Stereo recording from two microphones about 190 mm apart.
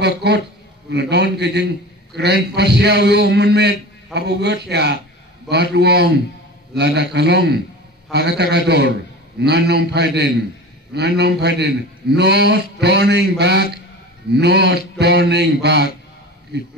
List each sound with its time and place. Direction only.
0.0 s a man's voice: 60° right (ahead or behind)